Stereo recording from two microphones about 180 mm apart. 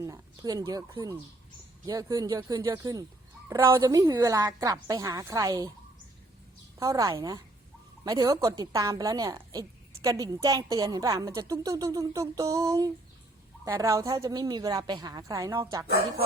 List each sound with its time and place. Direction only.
0.0 s a woman's voice: 20° right (ahead or behind)
6.7 s a woman's voice: 20° right (ahead or behind)